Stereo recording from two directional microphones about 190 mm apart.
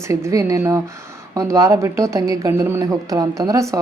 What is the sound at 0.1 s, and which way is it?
Speech, 15° right (ahead or behind).